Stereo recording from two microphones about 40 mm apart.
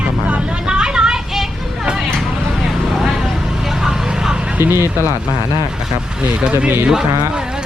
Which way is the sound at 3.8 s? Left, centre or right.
Centre.